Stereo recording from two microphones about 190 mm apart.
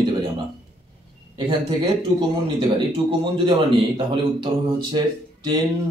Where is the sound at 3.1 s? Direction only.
25° right (ahead or behind).